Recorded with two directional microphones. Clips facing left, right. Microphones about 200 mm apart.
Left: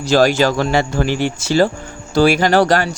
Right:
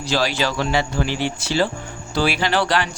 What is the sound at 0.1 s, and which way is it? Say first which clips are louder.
Speech: left 9 dB; 45° left (ahead or behind).